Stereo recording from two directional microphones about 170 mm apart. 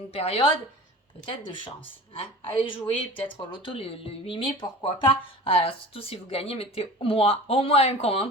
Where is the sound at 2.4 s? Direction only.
30° left (ahead or behind).